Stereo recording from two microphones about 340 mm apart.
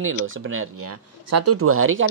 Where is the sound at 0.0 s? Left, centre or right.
Right.